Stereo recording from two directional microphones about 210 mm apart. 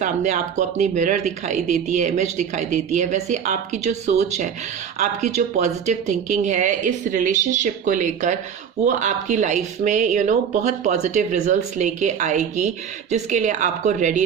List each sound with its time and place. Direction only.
0.0 s speech: 35° right (ahead or behind)